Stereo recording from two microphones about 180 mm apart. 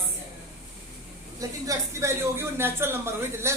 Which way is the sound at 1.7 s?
15° right (ahead or behind).